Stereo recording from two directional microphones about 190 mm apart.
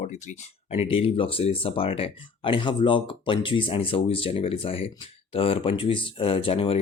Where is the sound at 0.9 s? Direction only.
30° left (ahead or behind).